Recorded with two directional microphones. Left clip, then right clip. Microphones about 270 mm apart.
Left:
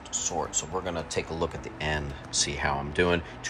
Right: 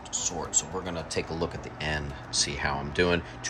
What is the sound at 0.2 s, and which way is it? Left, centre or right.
Speech, centre.